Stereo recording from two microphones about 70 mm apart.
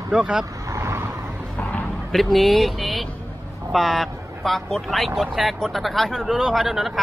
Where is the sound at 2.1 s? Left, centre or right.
Centre.